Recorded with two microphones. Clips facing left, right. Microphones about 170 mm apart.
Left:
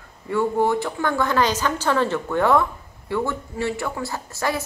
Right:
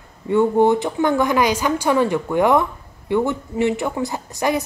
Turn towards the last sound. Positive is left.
turn(degrees=-15)  # may be behind; listen again after turning